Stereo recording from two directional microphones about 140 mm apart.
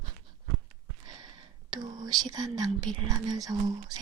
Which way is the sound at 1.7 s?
30° right (ahead or behind).